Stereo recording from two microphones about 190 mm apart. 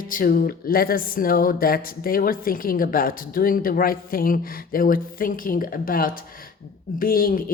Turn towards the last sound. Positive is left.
turn(degrees=50)  # may be behind; listen again after turning